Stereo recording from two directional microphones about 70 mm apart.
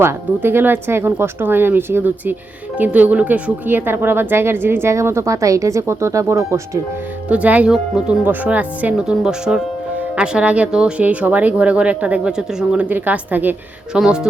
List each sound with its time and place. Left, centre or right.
0.4 s speech: right
7.3 s speech: centre
8.2 s speech: right
9.0 s speech: centre; by 13.6 s right
13.9 s speech: centre